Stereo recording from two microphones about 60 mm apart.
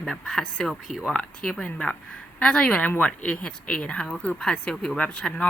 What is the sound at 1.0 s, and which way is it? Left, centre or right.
Speech, centre.